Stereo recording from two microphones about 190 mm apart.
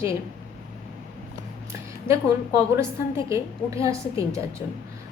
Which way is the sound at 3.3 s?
15° right (ahead or behind).